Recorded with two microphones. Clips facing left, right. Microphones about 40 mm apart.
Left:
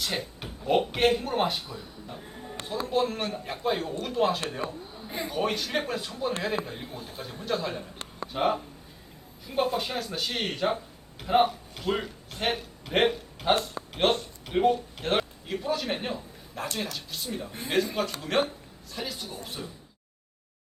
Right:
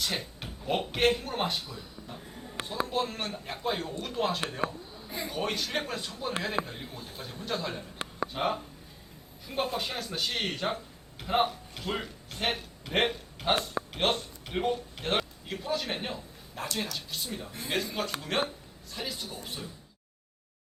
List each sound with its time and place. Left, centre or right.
0.0 s speech: centre
4.9 s a sound: left
5.3 s speech: centre
9.7 s a man's voice: centre